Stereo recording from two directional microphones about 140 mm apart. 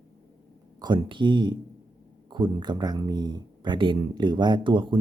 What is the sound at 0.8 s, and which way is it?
Speech, 35° right (ahead or behind).